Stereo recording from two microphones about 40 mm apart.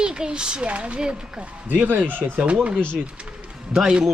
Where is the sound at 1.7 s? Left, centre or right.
Right.